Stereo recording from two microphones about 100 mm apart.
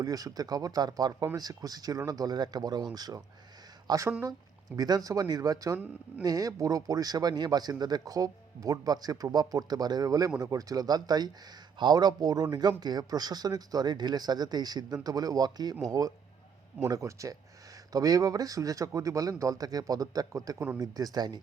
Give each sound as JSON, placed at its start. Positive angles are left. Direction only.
{"t": 0.0, "sound": "speech", "side_deg": -35}